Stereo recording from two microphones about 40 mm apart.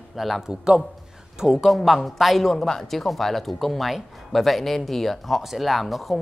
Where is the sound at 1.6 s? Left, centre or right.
Centre.